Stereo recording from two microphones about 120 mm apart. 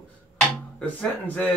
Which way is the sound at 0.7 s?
10° left (ahead or behind).